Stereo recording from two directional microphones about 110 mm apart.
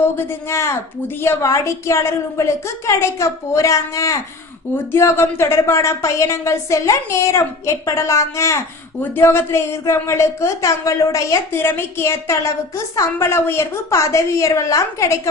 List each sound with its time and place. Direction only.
0.2 s speech: 20° left (ahead or behind)